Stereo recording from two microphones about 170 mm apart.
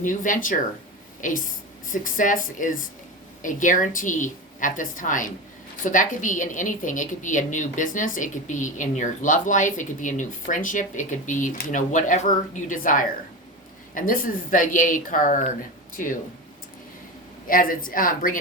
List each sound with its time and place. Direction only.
0.0 s a woman's voice: 50° left (ahead or behind)
17.5 s a woman's voice: 55° left (ahead or behind)